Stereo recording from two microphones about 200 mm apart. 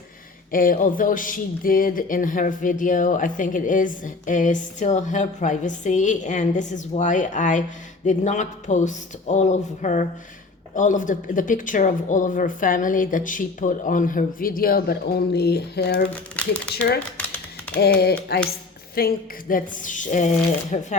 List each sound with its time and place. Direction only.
0.5 s speech: 45° left (ahead or behind)
16.0 s speech: 5° left (ahead or behind)
17.7 s speech: 50° left (ahead or behind)